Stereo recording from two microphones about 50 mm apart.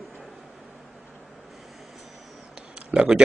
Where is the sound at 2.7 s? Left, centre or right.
Right.